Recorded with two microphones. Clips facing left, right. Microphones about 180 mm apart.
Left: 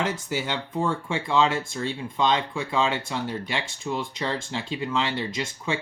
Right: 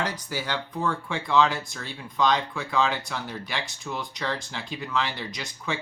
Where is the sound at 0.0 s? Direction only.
25° left (ahead or behind).